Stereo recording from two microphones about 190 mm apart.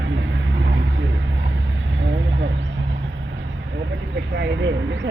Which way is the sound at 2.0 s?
75° right (ahead or behind).